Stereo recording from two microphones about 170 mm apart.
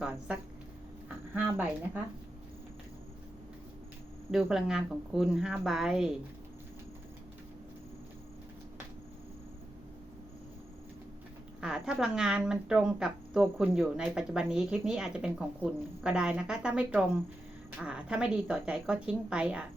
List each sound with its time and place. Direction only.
0.0 s speech: 5° right (ahead or behind)
4.3 s speech: centre (ahead or behind)
11.6 s speech: 5° right (ahead or behind)